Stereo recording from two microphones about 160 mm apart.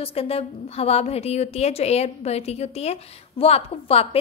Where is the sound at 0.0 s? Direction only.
35° left (ahead or behind).